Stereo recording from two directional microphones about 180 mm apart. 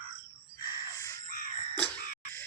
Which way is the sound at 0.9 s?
15° left (ahead or behind).